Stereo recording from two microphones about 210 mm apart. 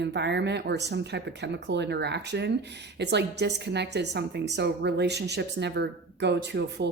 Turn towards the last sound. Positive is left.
turn(degrees=-55)  # may be behind; listen again after turning